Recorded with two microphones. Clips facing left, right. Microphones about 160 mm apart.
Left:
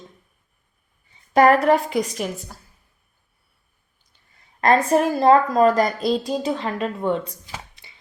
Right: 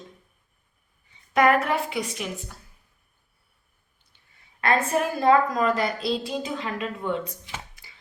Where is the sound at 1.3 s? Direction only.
35° left (ahead or behind).